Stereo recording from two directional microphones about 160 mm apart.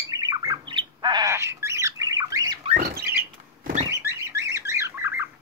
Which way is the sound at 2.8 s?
75° right (ahead or behind).